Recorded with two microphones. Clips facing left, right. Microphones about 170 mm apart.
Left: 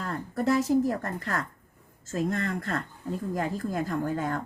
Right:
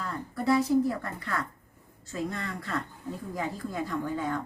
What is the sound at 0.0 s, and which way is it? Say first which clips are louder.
A woman's voice: left 2 dB; 50° left (ahead or behind).